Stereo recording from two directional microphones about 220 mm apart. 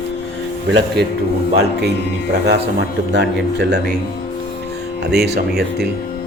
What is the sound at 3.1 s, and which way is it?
Speech, 50° right (ahead or behind).